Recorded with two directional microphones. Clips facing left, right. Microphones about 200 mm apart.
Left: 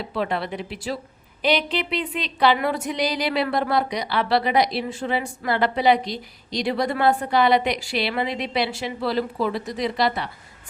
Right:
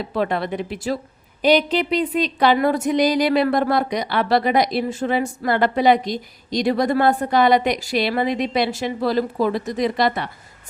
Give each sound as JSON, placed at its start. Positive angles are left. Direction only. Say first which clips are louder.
{"t": 0.1, "sound": "speech", "louder": "right 4 dB", "side_deg": -45}